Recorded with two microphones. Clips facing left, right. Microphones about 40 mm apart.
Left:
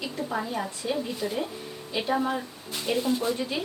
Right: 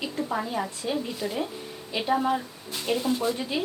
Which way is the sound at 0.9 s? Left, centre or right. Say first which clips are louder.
Left 2 dB; centre.